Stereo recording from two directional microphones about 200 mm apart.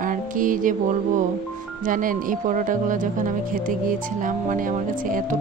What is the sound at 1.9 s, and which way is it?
Speech, 45° right (ahead or behind).